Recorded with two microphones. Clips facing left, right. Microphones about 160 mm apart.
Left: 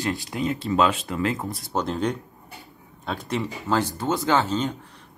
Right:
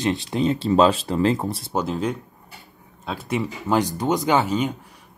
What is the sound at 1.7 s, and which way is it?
Speech, 5° right (ahead or behind).